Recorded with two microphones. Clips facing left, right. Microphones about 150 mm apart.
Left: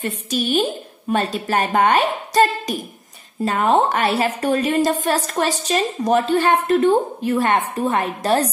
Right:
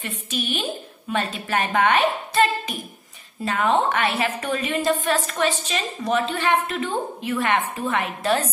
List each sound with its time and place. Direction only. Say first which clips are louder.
0.0 s a woman's voice: left 6 dB; 40° left (ahead or behind)